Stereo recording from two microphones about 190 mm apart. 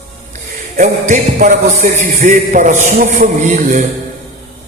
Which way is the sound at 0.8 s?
40° right (ahead or behind).